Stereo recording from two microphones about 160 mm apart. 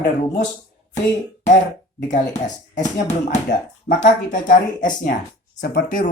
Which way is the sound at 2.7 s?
55° left (ahead or behind).